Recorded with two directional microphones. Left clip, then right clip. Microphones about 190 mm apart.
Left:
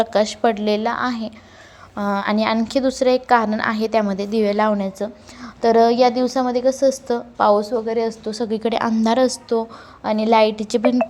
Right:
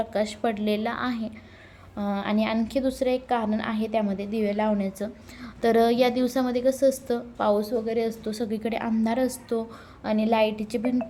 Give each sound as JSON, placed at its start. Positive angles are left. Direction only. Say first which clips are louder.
{"t": 0.0, "sound": "a woman's voice", "louder": "left 9 dB", "side_deg": 10}
{"t": 2.0, "sound": "a woman's voice", "louder": "left 7 dB", "side_deg": 15}